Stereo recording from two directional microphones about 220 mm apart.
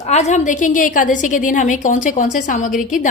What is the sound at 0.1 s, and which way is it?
A woman's voice, 30° left (ahead or behind).